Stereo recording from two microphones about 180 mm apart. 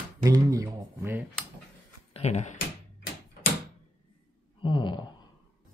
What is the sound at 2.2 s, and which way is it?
Speech, 40° left (ahead or behind).